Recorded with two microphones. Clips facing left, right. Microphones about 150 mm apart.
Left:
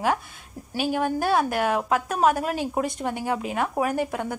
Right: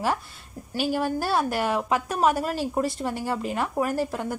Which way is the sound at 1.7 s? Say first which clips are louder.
Left 1 dB; centre (ahead or behind).